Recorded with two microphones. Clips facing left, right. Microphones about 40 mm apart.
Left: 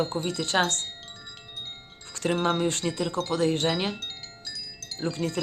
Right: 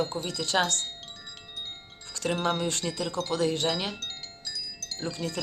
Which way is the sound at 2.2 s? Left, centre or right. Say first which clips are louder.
Left 2 dB; left.